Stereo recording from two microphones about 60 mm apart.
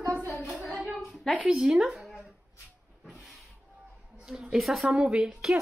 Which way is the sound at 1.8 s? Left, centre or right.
Centre.